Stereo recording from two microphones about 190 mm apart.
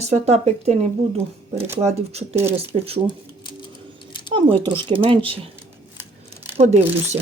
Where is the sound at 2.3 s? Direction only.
10° right (ahead or behind).